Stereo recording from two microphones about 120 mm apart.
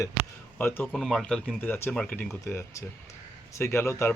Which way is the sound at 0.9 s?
Centre (ahead or behind).